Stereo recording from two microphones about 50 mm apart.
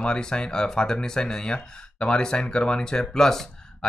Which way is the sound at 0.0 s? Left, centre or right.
Centre.